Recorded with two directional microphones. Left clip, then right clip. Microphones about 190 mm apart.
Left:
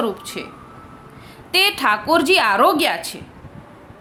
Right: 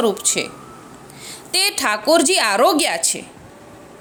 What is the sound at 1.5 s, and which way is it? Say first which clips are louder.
A woman's voice: left 2 dB; 25° right (ahead or behind).